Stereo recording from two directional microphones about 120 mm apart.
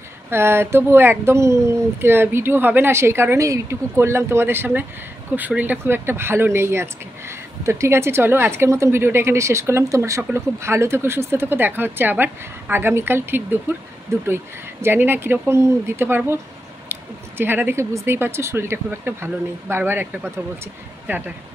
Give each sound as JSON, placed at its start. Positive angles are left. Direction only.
{"t": 0.3, "sound": "speech", "side_deg": -20}